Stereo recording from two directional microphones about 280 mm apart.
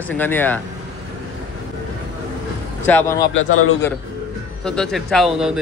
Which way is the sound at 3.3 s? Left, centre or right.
Left.